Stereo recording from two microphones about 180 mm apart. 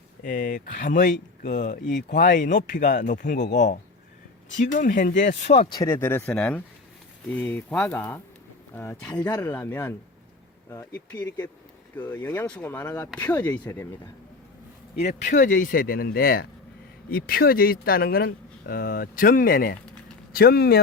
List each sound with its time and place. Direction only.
0.3 s speech: 50° left (ahead or behind)
2.0 s speech: 70° left (ahead or behind)
2.2 s speech: 45° left (ahead or behind)
5.6 s speech: 20° left (ahead or behind)
15.0 s speech: 45° left (ahead or behind)